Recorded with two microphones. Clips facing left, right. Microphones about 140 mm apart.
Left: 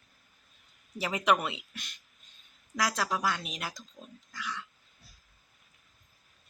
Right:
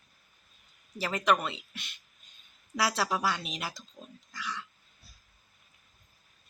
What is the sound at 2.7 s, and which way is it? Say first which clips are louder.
Speech: right 1 dB; 5° right (ahead or behind).